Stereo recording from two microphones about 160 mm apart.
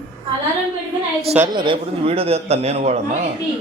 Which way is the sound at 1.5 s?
30° right (ahead or behind).